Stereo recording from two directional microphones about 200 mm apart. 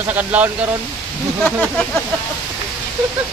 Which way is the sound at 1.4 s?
5° left (ahead or behind).